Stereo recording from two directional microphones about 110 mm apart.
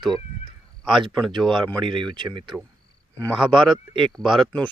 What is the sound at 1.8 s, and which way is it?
Speech, 45° right (ahead or behind).